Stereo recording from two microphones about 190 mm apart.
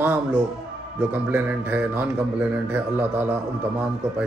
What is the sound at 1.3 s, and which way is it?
A man's voice, 10° right (ahead or behind).